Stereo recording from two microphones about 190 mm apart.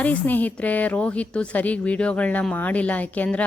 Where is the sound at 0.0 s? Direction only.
10° left (ahead or behind).